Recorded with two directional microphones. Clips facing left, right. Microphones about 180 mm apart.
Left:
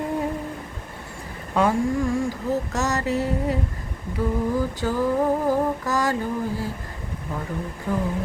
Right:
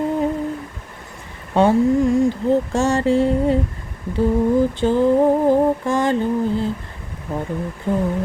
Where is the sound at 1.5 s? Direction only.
25° right (ahead or behind).